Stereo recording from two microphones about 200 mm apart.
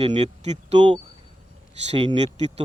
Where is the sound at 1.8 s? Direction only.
30° right (ahead or behind).